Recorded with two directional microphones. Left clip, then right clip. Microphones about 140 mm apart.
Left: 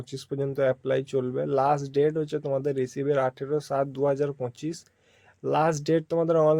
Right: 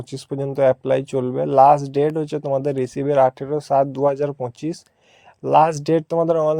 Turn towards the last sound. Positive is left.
turn(degrees=-40)  # may be behind; listen again after turning